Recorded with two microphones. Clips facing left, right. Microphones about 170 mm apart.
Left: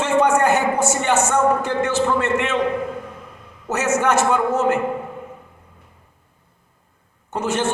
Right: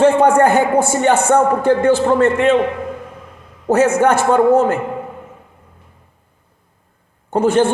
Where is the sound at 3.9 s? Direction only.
55° right (ahead or behind).